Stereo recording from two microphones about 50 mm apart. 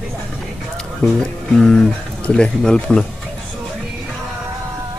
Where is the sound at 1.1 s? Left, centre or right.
Centre.